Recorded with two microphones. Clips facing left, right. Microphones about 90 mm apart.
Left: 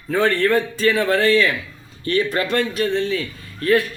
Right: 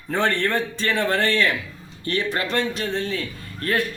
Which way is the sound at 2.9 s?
35° right (ahead or behind).